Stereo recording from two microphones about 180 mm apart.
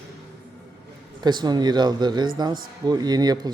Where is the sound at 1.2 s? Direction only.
25° right (ahead or behind).